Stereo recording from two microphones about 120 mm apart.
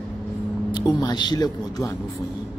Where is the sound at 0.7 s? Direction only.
35° left (ahead or behind).